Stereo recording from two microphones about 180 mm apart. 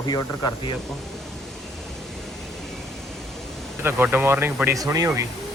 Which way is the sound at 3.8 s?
15° right (ahead or behind).